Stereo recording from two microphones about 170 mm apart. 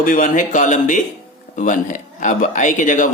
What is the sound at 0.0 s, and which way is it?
Speech, 50° left (ahead or behind).